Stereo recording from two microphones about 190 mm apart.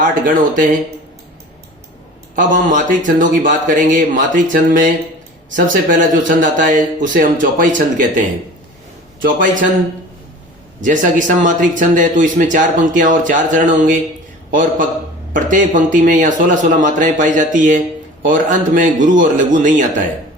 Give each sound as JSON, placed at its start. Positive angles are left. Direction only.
{"t": 0.0, "sound": "speech", "side_deg": -45}
{"t": 2.3, "sound": "speech", "side_deg": -45}
{"t": 10.8, "sound": "speech", "side_deg": -40}